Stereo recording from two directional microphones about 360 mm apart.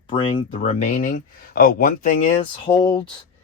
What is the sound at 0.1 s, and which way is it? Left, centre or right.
Speech, centre.